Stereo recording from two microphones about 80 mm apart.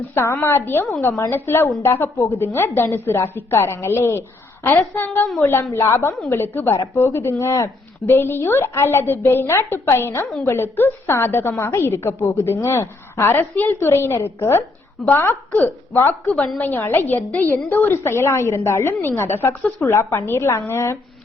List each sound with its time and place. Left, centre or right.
0.1 s a woman's voice: left
16.0 s a woman's voice: left
16.3 s a woman's voice: centre
16.7 s a woman's voice: left